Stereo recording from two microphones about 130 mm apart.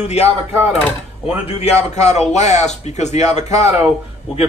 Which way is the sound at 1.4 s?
55° left (ahead or behind).